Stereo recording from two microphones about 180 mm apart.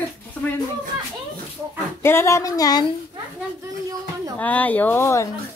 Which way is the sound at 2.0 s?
15° left (ahead or behind).